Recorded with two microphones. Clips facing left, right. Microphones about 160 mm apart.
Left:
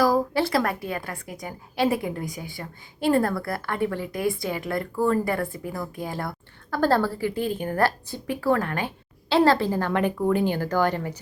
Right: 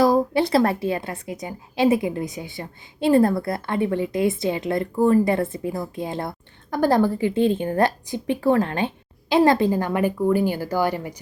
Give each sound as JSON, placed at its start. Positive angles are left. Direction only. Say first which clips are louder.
{"t": 0.0, "sound": "a woman's voice", "louder": "right 3 dB", "side_deg": -20}